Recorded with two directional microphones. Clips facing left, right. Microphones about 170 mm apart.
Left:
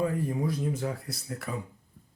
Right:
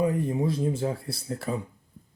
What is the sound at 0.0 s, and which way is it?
A man's voice, 20° right (ahead or behind).